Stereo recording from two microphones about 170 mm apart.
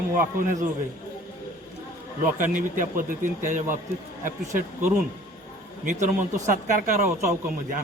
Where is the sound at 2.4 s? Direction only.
50° right (ahead or behind).